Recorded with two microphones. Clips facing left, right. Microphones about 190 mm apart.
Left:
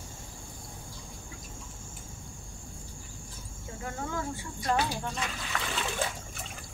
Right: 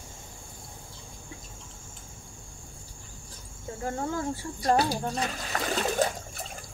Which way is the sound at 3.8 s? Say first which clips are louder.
Right 5 dB; 35° right (ahead or behind).